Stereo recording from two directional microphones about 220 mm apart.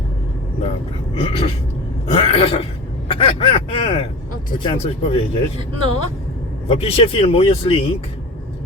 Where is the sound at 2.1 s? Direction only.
25° left (ahead or behind).